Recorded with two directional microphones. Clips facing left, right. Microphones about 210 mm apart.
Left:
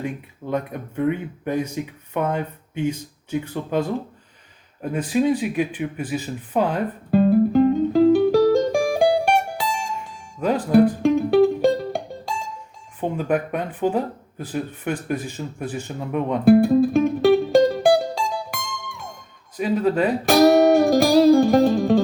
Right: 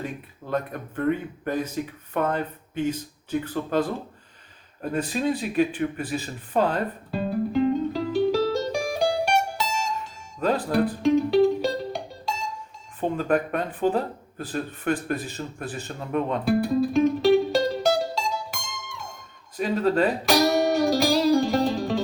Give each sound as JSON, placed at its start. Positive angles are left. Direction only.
{"t": 0.5, "sound": "speech", "side_deg": 10}
{"t": 7.1, "sound": "music", "side_deg": 50}
{"t": 13.0, "sound": "speech", "side_deg": 10}
{"t": 16.4, "sound": "music", "side_deg": 55}
{"t": 19.5, "sound": "speech", "side_deg": 10}
{"t": 20.2, "sound": "music", "side_deg": 55}